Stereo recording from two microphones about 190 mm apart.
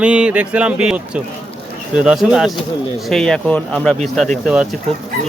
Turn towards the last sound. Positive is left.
turn(degrees=-5)  # may be behind; listen again after turning